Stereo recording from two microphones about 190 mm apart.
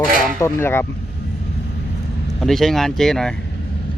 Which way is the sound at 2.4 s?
Centre (ahead or behind).